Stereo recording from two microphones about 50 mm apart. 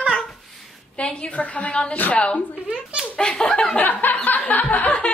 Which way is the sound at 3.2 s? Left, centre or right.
Centre.